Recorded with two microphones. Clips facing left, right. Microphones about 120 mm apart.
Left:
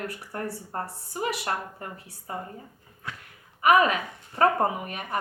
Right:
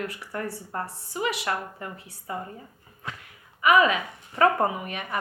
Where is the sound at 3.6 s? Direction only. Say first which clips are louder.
Even; 45° left (ahead or behind).